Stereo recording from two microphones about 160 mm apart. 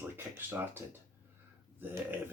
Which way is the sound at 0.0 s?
15° right (ahead or behind).